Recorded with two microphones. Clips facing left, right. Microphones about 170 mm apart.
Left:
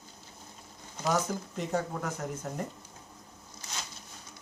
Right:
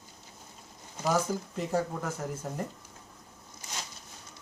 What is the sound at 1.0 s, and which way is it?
Speech, 5° right (ahead or behind).